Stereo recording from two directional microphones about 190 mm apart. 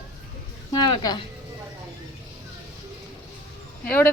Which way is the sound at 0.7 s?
20° left (ahead or behind).